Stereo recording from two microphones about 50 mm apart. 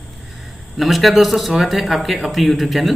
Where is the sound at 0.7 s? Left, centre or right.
Centre.